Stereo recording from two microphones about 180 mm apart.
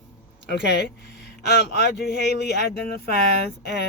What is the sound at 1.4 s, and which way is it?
Speech, 65° left (ahead or behind).